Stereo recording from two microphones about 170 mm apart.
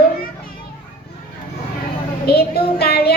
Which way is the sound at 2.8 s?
70° left (ahead or behind).